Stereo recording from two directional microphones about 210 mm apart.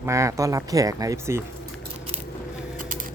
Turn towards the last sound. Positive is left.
turn(degrees=-40)  # may be behind; listen again after turning